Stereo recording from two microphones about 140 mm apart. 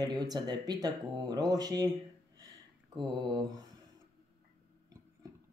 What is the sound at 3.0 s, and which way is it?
Speech, 35° right (ahead or behind).